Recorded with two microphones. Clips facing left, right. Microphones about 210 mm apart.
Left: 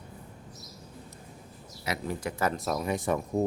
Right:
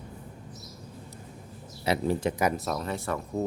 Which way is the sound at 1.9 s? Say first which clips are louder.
Right 7 dB; 30° right (ahead or behind).